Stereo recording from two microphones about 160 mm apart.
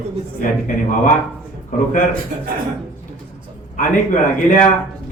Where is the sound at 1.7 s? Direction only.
50° left (ahead or behind).